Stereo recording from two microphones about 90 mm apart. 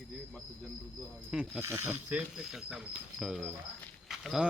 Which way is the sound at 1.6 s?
25° right (ahead or behind).